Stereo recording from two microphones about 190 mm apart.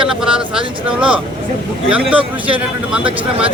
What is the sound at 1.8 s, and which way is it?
Speech, 5° right (ahead or behind).